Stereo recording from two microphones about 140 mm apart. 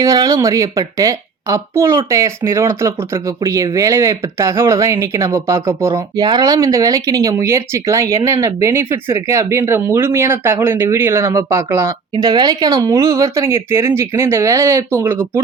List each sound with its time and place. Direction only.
0.0 s a woman's voice: 25° right (ahead or behind)
12.1 s a woman's voice: 30° right (ahead or behind)